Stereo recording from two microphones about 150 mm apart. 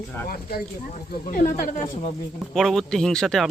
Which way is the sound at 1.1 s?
65° left (ahead or behind).